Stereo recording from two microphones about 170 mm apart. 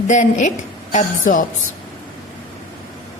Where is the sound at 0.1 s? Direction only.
50° left (ahead or behind).